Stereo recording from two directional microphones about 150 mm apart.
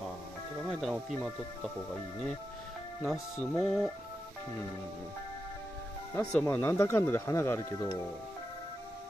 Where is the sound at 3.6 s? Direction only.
5° right (ahead or behind).